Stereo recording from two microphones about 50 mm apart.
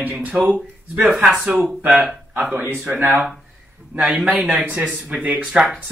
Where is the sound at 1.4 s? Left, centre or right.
Right.